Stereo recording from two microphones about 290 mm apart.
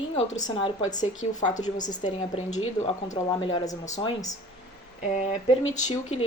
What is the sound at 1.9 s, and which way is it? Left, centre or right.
A woman's voice, centre.